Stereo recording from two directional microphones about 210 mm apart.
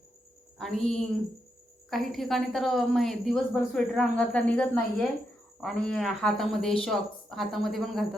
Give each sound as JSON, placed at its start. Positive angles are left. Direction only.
{"t": 0.6, "sound": "a woman's voice", "side_deg": 0}